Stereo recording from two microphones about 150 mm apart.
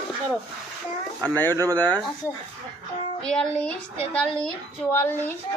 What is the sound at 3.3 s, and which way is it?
A woman's voice, 5° left (ahead or behind).